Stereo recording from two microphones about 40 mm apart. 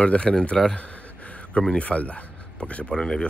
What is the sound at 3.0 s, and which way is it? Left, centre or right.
Speech, centre.